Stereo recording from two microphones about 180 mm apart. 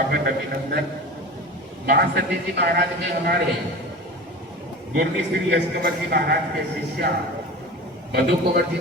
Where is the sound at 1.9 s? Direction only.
65° right (ahead or behind).